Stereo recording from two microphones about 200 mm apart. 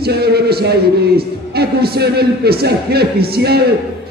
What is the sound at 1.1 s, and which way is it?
A man's voice, 50° right (ahead or behind).